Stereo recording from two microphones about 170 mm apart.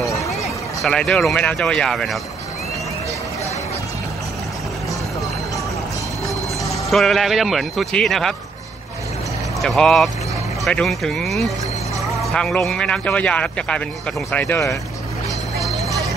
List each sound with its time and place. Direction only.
0.0 s a sound: 20° left (ahead or behind)
0.8 s speech: 5° left (ahead or behind)
6.7 s speech: centre (ahead or behind)
9.6 s speech: centre (ahead or behind)
15.6 s vehicle: centre (ahead or behind)